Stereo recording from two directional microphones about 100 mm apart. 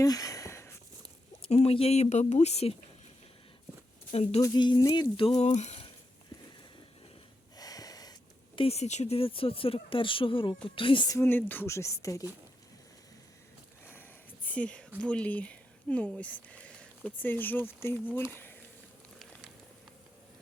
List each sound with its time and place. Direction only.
0.0 s a sound: 35° left (ahead or behind)
1.4 s speech: 90° left
4.1 s speech: 90° left
4.4 s speech: 40° left (ahead or behind)
5.4 s speech: 80° left
7.5 s snort: 40° left (ahead or behind)
8.5 s a woman's voice: 80° left; by 11.1 s 55° left (ahead or behind)
11.3 s speech: 20° left (ahead or behind)
14.4 s a sound: 15° left (ahead or behind)
15.0 s speech: 15° left (ahead or behind)